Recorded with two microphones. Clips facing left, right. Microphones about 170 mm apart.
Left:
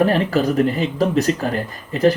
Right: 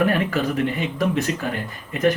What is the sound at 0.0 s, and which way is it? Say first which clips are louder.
Speech: left 4 dB; 30° left (ahead or behind).